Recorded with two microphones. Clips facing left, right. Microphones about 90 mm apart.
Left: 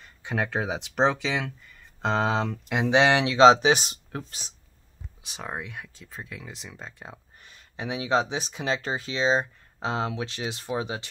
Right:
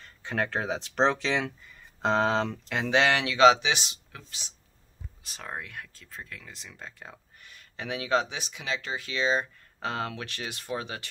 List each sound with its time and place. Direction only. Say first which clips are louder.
0.0 s speech: left 1 dB; 10° left (ahead or behind)
2.7 s speech: left 4 dB; 15° left (ahead or behind)
3.5 s speech: left 8 dB; 40° left (ahead or behind)
5.2 s speech: left 3 dB; 10° left (ahead or behind)
8.4 s speech: left 6 dB; 35° left (ahead or behind)